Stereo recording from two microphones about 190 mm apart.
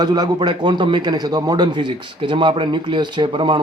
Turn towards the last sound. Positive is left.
turn(degrees=-25)  # may be behind; listen again after turning